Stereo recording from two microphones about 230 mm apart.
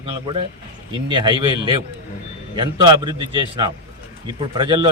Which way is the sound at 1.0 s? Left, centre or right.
Centre.